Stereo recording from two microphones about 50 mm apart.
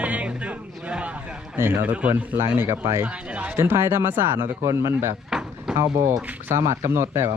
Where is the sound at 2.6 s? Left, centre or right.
Right.